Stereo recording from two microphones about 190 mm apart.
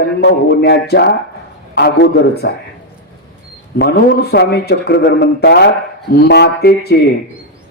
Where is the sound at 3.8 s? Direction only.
60° left (ahead or behind).